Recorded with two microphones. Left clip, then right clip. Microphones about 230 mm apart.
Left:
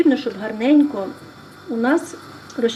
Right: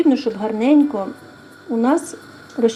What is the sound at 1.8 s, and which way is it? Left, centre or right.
Speech, centre.